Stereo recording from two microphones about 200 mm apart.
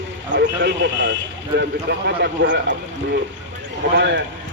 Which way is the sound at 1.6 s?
60° right (ahead or behind).